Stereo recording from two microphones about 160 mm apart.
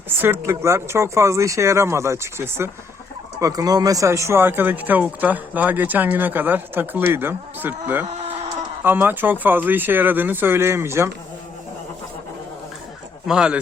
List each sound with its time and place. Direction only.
0.2 s speech: 15° right (ahead or behind)
8.0 s chicken: 40° right (ahead or behind)
8.8 s speech: 10° right (ahead or behind)
13.2 s speech: 5° right (ahead or behind)